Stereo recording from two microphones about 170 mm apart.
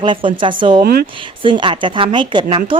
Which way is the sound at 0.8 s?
65° right (ahead or behind).